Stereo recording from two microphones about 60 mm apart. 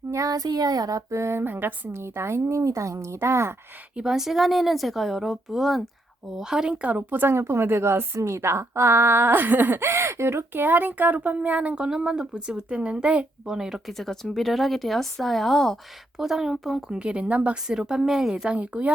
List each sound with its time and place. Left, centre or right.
0.1 s child singing: right
1.1 s a woman's voice: right
3.9 s speech: centre
6.8 s a woman's voice: right; by 13.9 s centre
13.9 s speech: centre
16.1 s speech: centre
17.0 s speech: centre
18.5 s speech: right